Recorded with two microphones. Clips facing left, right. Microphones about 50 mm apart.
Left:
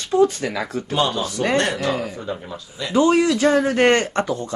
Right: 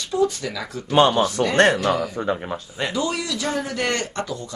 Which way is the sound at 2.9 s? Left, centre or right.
Left.